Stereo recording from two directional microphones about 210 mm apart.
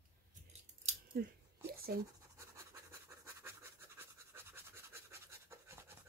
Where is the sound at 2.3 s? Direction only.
15° right (ahead or behind).